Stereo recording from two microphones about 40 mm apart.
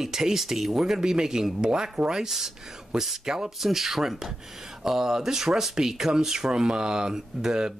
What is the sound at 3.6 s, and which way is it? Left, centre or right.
Speech, centre.